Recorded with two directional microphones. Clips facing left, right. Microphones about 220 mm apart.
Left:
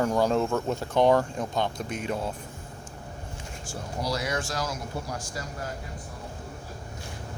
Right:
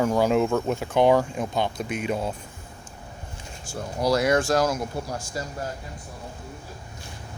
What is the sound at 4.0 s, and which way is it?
Speech, 50° right (ahead or behind).